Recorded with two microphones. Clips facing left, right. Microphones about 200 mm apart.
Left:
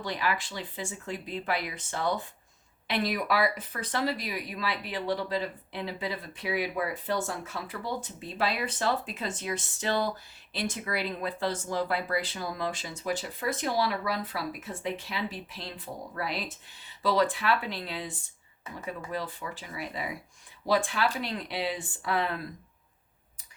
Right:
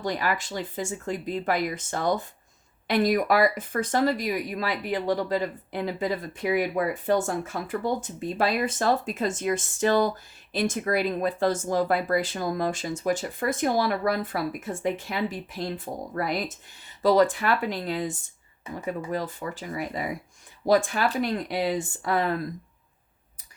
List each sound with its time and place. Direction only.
0.0 s speech: 45° right (ahead or behind)